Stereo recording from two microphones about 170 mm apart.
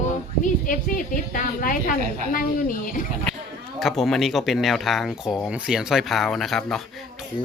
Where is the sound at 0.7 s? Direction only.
55° left (ahead or behind).